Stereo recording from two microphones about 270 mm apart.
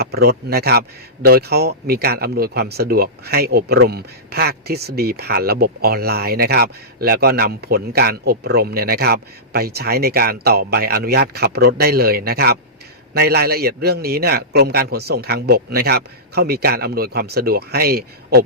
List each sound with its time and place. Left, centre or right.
0.0 s speech: right